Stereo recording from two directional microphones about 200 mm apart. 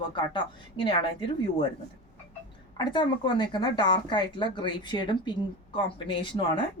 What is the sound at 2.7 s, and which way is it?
A woman's voice, 20° left (ahead or behind).